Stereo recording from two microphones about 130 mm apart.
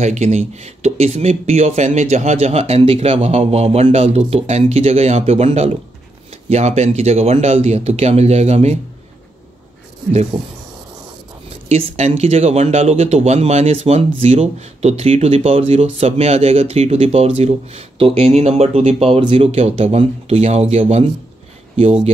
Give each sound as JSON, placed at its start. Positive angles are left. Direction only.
{"t": 0.0, "sound": "speech", "side_deg": -60}
{"t": 10.3, "sound": "speech", "side_deg": -5}
{"t": 11.7, "sound": "speech", "side_deg": -55}